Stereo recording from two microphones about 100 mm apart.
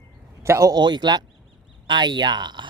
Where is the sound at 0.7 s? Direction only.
45° right (ahead or behind).